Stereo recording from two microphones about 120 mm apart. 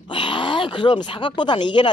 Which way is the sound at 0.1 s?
45° left (ahead or behind).